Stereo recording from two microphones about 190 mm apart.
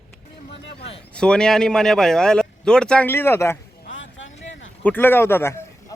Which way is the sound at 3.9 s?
85° left.